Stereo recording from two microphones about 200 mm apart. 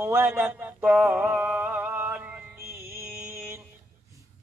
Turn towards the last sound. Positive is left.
turn(degrees=-10)  # may be behind; listen again after turning